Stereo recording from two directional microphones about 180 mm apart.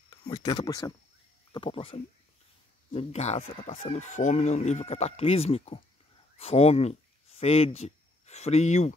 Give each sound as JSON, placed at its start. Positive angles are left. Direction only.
{"t": 0.1, "sound": "speech", "side_deg": 20}